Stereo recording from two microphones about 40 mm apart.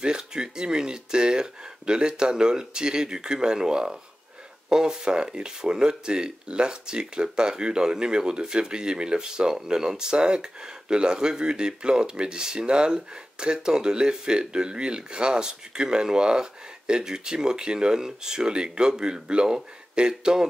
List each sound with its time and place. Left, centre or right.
0.0 s speech: centre